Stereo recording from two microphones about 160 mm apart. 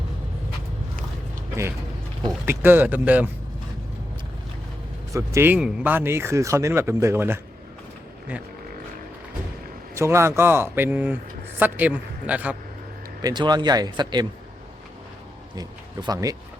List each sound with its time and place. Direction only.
2.5 s speech: 15° right (ahead or behind)
5.1 s speech: 15° right (ahead or behind)
9.9 s speech: 15° right (ahead or behind)
13.2 s speech: 25° right (ahead or behind)
15.5 s speech: 25° right (ahead or behind)